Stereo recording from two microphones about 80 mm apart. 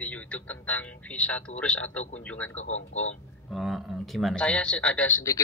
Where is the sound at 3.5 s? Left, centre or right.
Centre.